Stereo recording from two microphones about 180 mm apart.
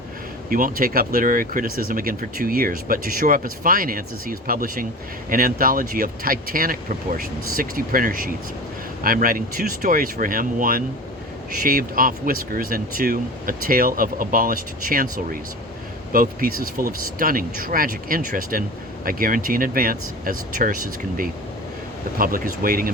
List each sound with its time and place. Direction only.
0.5 s speech: 50° right (ahead or behind)